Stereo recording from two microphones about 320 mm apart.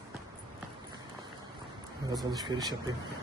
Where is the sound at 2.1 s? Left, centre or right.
Centre.